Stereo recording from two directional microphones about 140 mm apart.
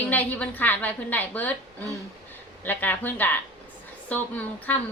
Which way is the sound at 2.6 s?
15° left (ahead or behind).